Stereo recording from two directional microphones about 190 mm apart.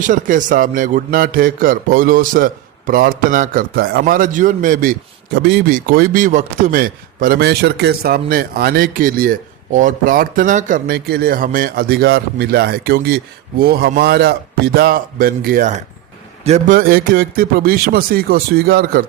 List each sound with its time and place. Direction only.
0.0 s a man's voice: 45° right (ahead or behind)
16.4 s a man's voice: 40° right (ahead or behind)